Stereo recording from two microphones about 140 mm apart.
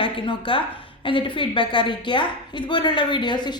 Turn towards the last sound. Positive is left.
turn(degrees=30)  # may be behind; listen again after turning